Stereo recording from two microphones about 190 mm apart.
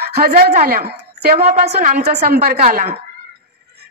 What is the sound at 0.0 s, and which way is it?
A woman's voice, 55° right (ahead or behind).